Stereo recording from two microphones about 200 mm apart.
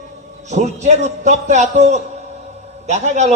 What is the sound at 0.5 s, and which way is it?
A man's voice, 35° right (ahead or behind).